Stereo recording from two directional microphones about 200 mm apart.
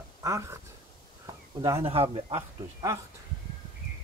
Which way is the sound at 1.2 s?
15° right (ahead or behind).